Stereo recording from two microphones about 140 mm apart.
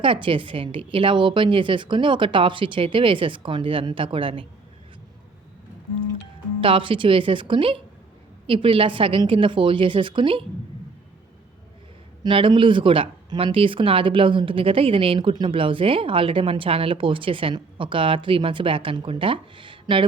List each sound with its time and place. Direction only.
0.0 s speech: 40° right (ahead or behind)
6.6 s speech: 40° right (ahead or behind)
12.2 s speech: 35° right (ahead or behind)